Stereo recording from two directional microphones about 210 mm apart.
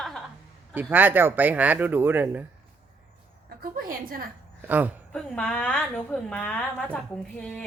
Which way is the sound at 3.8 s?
45° right (ahead or behind).